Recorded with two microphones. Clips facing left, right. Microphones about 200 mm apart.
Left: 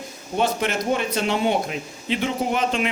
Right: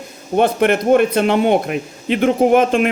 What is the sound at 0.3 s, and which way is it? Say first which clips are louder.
A man's voice: right 8 dB; 60° right (ahead or behind).